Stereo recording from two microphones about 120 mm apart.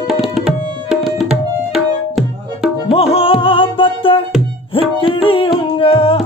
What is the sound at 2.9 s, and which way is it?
Music, 55° left (ahead or behind).